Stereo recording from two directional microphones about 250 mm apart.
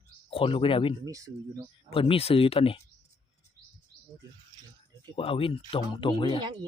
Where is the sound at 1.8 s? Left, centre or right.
Left.